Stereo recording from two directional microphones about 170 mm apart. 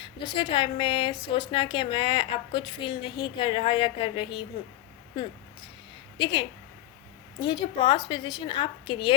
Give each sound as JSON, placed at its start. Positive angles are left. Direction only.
{"t": 0.0, "sound": "a woman's voice", "side_deg": 30}
{"t": 6.1, "sound": "a woman's voice", "side_deg": 30}
{"t": 7.4, "sound": "a woman's voice", "side_deg": 25}